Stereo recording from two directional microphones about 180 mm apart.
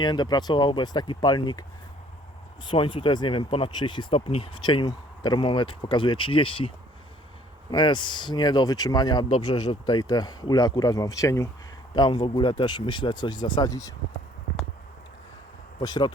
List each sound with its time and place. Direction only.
0.0 s speech: 25° left (ahead or behind)
2.6 s speech: 30° left (ahead or behind)
7.7 s speech: 25° left (ahead or behind)
15.8 s speech: 25° left (ahead or behind)